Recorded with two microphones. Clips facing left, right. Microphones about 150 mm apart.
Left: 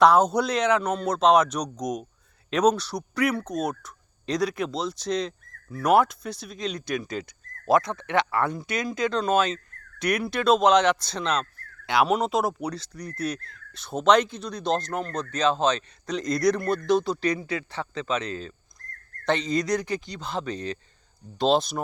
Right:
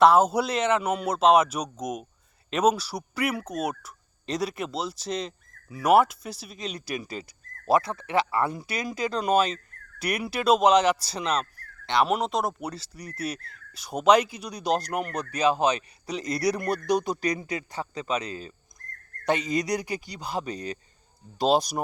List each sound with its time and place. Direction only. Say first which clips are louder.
0.0 s speech: even; 5° right (ahead or behind)
17.4 s a man's voice: left 2 dB; 40° right (ahead or behind)
17.7 s speech: even; 10° right (ahead or behind)